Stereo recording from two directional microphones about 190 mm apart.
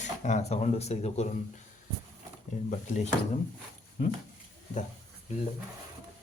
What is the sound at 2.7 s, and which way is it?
Speech, 40° left (ahead or behind).